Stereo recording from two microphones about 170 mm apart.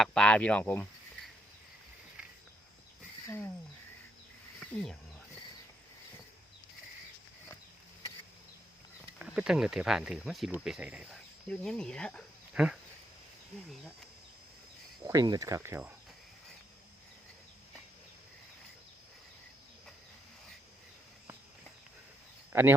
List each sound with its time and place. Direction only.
0.0 s speech: 5° left (ahead or behind)
3.2 s speech: 15° left (ahead or behind)
4.6 s speech: 5° left (ahead or behind)
9.1 s speech: 5° right (ahead or behind)
11.1 s speech: 5° left (ahead or behind)
12.6 s speech: 10° right (ahead or behind)
15.0 s speech: 20° right (ahead or behind)
22.5 s speech: 15° right (ahead or behind)